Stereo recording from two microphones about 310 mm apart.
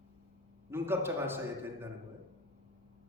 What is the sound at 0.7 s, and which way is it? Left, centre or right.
A man's voice, centre.